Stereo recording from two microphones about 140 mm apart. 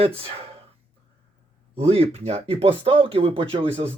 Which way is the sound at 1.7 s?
45° right (ahead or behind).